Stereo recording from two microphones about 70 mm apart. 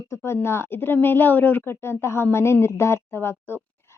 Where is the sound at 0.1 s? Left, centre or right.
Left.